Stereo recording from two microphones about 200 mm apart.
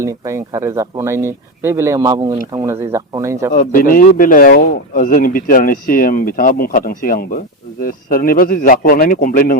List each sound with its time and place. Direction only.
0.0 s speech: 15° right (ahead or behind)
3.5 s speech: 40° left (ahead or behind)